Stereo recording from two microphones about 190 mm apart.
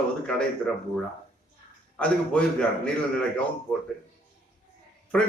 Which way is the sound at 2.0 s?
5° left (ahead or behind).